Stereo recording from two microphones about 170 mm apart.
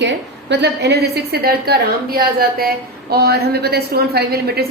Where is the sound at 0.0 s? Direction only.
90° right.